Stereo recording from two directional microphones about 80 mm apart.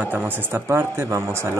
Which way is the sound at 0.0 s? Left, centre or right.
Right.